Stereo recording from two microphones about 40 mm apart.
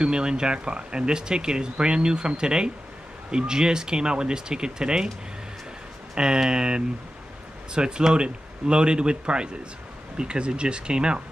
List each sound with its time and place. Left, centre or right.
0.0 s speech: right
6.1 s speech: centre